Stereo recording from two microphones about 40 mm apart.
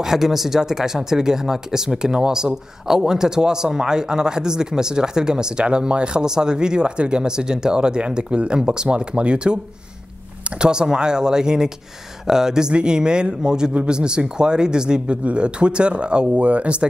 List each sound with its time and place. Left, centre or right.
0.0 s speech: centre; by 9.6 s right
10.6 s speech: centre